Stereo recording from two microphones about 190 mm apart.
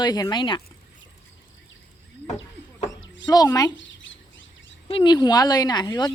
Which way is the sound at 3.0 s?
75° left (ahead or behind).